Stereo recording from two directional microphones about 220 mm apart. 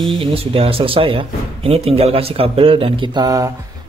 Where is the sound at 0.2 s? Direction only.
25° right (ahead or behind).